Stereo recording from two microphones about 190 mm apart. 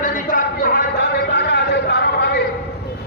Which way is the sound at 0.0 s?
45° left (ahead or behind).